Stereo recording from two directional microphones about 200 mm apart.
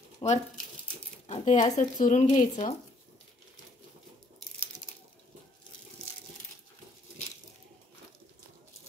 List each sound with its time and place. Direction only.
0.2 s speech: 25° left (ahead or behind)